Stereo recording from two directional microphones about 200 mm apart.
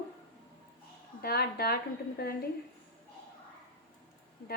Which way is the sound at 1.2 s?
50° left (ahead or behind).